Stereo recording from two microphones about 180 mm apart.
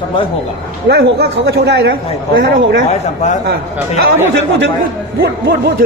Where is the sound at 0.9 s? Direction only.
65° right (ahead or behind).